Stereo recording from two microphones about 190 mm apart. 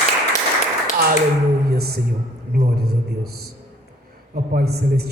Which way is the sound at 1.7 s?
55° right (ahead or behind).